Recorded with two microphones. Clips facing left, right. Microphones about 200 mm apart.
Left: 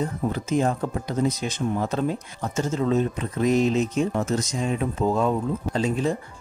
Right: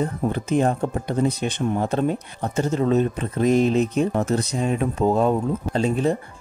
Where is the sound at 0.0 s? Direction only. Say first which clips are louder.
Right 3 dB; 60° right (ahead or behind).